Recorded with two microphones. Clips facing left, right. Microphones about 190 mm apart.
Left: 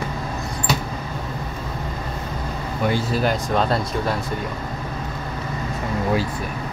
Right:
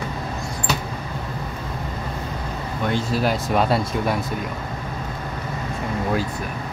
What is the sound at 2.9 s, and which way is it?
Speech, centre (ahead or behind).